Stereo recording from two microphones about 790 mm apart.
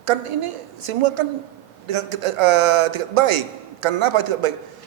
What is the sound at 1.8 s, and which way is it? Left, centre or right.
A man's voice, right.